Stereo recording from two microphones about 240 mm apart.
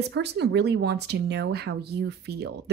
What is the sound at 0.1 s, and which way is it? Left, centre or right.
Speech, right.